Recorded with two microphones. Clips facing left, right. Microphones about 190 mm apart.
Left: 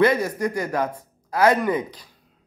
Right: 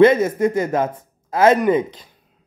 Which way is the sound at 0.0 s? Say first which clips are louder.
Right 7 dB; 25° right (ahead or behind).